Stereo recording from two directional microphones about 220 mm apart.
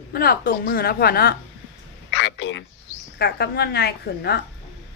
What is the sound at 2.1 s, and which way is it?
A man's voice, 55° left (ahead or behind).